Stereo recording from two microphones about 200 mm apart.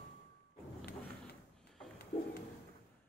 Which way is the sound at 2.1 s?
35° left (ahead or behind).